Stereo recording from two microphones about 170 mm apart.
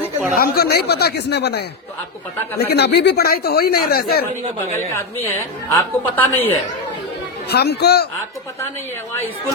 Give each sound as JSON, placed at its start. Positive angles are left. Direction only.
{"t": 0.3, "sound": "speech", "side_deg": 65}
{"t": 4.8, "sound": "a woman's voice", "side_deg": 15}
{"t": 7.5, "sound": "speech", "side_deg": 70}